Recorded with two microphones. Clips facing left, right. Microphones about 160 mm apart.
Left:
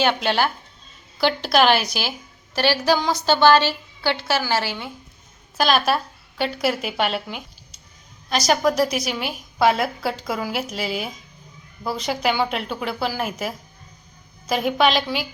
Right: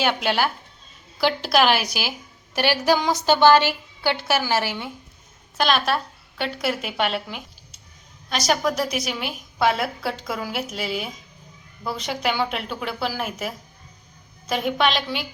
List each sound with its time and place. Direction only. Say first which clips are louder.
0.0 s a woman's voice: left 2 dB; 5° right (ahead or behind)
5.5 s a woman's voice: left 2 dB; 5° left (ahead or behind)
14.5 s a woman's voice: left 3 dB; 5° left (ahead or behind)